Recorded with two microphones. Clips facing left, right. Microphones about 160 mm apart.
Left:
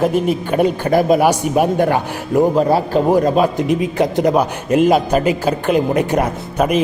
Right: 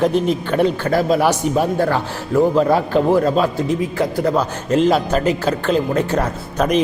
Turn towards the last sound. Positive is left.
turn(degrees=10)  # may be behind; listen again after turning